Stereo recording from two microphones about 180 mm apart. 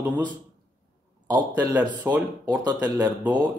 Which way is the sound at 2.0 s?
20° right (ahead or behind).